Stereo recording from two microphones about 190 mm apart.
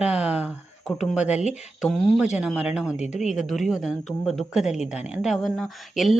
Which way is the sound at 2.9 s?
35° left (ahead or behind).